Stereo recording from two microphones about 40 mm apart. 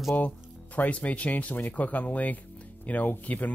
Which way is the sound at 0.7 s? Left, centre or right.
Left.